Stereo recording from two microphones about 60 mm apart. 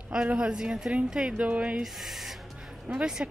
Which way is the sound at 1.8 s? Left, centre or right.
Centre.